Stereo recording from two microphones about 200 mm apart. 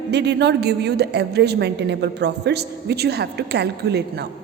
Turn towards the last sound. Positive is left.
turn(degrees=-55)  # may be behind; listen again after turning